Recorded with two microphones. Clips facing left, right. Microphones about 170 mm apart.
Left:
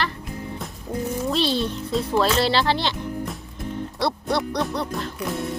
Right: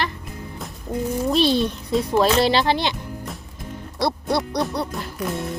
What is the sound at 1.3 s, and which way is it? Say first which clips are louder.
A child's voice: right 5 dB; 15° right (ahead or behind).